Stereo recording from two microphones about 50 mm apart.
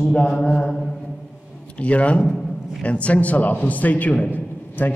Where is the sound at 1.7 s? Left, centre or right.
Left.